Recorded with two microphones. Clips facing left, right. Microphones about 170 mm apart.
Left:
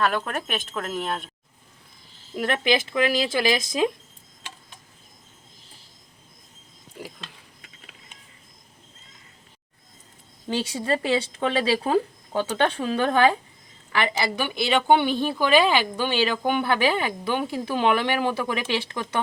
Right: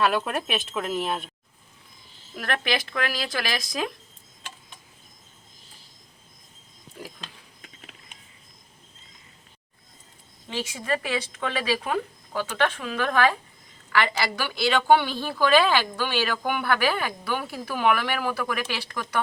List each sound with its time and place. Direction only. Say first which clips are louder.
0.0 s speech: right 1 dB; 5° right (ahead or behind)
2.3 s a woman's voice: left 5 dB; 25° left (ahead or behind)
10.5 s a woman's voice: left 4 dB; 35° left (ahead or behind)